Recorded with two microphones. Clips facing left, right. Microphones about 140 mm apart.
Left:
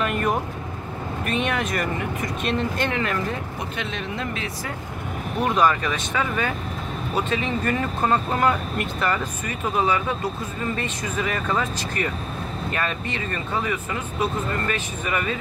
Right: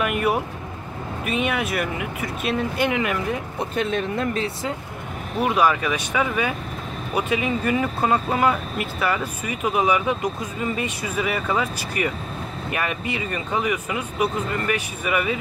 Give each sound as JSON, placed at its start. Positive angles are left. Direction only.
{"t": 0.0, "sound": "speech", "side_deg": -10}
{"t": 3.7, "sound": "speech", "side_deg": -45}
{"t": 5.4, "sound": "speech", "side_deg": -10}